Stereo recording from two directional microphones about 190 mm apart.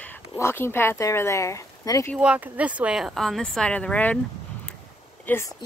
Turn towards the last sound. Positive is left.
turn(degrees=10)  # may be behind; listen again after turning